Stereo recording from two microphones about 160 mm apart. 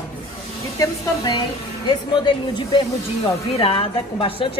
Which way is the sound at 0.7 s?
20° left (ahead or behind).